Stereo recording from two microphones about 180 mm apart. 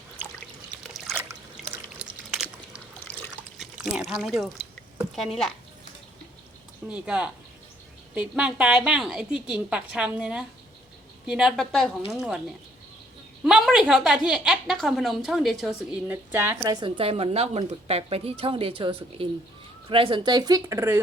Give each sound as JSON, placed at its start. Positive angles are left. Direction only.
{"t": 1.2, "sound": "drip", "side_deg": -10}
{"t": 3.6, "sound": "speech", "side_deg": -5}
{"t": 6.8, "sound": "a woman's voice", "side_deg": -5}
{"t": 13.4, "sound": "a woman's voice", "side_deg": 0}
{"t": 16.8, "sound": "speech", "side_deg": -30}